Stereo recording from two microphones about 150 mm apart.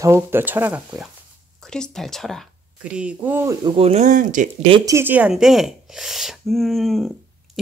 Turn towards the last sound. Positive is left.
turn(degrees=0)  # may be behind; listen again after turning